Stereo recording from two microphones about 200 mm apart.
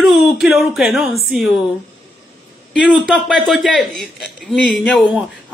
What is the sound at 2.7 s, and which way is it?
Speech, centre (ahead or behind).